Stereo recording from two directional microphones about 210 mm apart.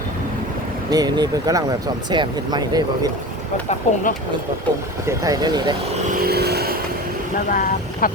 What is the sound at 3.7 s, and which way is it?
Speech, 35° left (ahead or behind).